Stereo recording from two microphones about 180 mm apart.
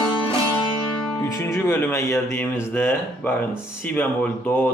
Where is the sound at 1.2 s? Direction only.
15° left (ahead or behind).